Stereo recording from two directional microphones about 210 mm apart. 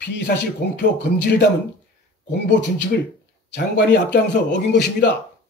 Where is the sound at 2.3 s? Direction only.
55° left (ahead or behind).